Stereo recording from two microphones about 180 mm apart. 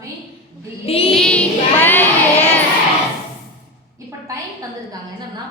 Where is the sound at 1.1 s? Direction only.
5° left (ahead or behind).